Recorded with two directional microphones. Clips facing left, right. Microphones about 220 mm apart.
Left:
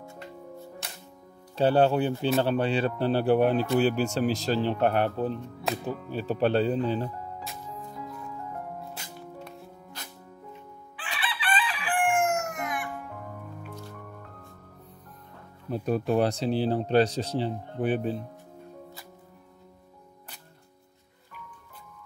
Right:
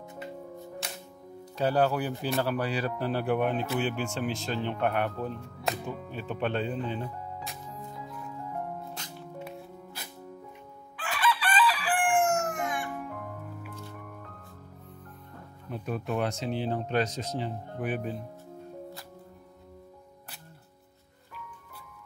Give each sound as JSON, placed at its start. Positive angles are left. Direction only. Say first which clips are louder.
{"t": 1.6, "sound": "speech", "louder": "left 4 dB", "side_deg": 30}
{"t": 5.7, "sound": "speech", "louder": "left 1 dB", "side_deg": 0}
{"t": 6.1, "sound": "speech", "louder": "left 7 dB", "side_deg": 35}
{"t": 10.0, "sound": "music", "louder": "even", "side_deg": -10}
{"t": 11.0, "sound": "chicken", "louder": "right 7 dB", "side_deg": -45}
{"t": 15.7, "sound": "speech", "louder": "left 7 dB", "side_deg": 35}